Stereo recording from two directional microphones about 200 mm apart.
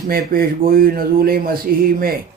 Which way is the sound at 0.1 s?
45° right (ahead or behind).